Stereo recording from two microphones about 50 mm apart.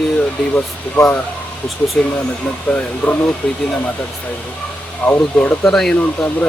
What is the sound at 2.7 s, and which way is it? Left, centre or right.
Speech, left.